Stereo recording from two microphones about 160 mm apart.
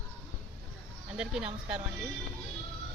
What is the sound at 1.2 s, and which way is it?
Speech, 5° right (ahead or behind).